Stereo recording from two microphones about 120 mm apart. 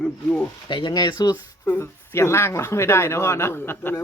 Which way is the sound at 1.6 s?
20° left (ahead or behind).